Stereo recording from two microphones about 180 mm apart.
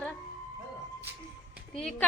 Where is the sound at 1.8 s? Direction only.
5° left (ahead or behind).